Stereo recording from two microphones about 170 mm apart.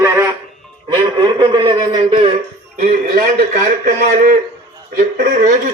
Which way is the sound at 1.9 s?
40° right (ahead or behind).